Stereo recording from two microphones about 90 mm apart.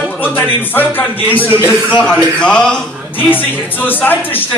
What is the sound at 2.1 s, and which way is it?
Speech, 10° left (ahead or behind).